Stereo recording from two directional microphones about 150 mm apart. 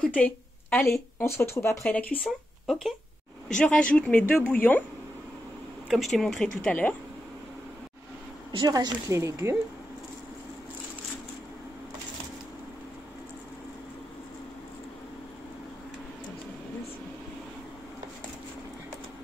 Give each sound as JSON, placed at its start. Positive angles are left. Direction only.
{"t": 0.0, "sound": "speech", "side_deg": 10}
{"t": 5.9, "sound": "speech", "side_deg": 0}
{"t": 8.5, "sound": "a woman's voice", "side_deg": -30}